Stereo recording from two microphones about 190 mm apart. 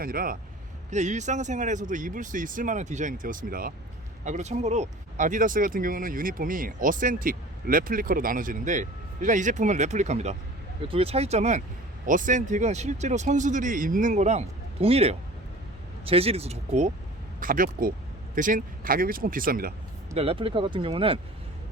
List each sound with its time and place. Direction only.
0.0 s speech: 50° right (ahead or behind)
0.9 s speech: 40° right (ahead or behind)
17.4 s speech: 45° right (ahead or behind)
20.1 s speech: 30° right (ahead or behind)